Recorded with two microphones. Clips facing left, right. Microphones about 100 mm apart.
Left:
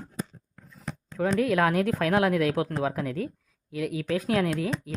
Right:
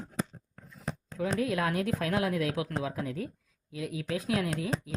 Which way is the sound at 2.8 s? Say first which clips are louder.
Left 5 dB; 65° left (ahead or behind).